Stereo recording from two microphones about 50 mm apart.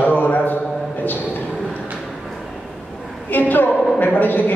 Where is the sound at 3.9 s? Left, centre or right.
Left.